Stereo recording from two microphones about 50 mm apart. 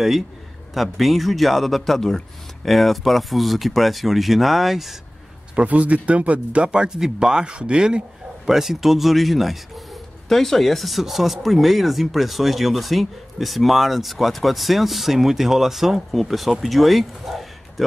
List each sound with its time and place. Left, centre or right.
0.7 s speech: centre
5.6 s speech: right
8.5 s speech: centre